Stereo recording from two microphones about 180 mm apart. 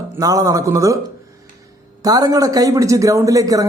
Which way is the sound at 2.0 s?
20° right (ahead or behind).